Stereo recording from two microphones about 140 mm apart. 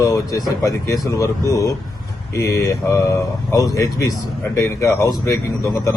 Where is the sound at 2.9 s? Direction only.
25° left (ahead or behind).